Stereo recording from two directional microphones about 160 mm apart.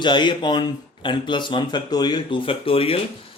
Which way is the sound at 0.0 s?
30° left (ahead or behind).